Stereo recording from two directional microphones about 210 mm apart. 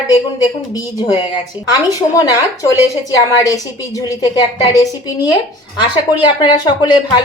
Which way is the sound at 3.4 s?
15° left (ahead or behind).